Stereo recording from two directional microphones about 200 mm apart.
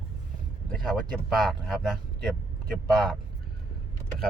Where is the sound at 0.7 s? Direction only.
Centre (ahead or behind).